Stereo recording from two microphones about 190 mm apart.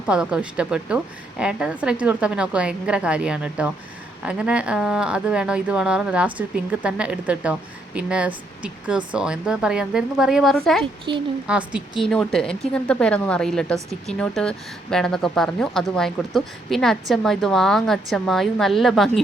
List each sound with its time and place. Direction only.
0.1 s speech: 5° right (ahead or behind)
11.1 s a woman's voice: 25° right (ahead or behind)
11.4 s speech: 5° right (ahead or behind)